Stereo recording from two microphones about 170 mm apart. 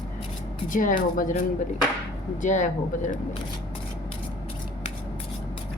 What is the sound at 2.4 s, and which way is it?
Speech, 45° left (ahead or behind).